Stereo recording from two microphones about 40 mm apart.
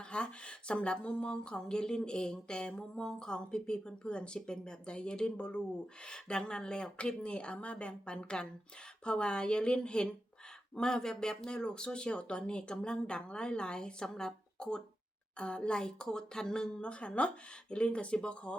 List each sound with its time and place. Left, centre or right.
0.0 s speech: left
16.9 s speech: left